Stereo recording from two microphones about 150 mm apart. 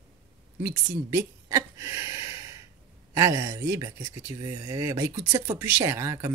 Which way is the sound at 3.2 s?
20° right (ahead or behind).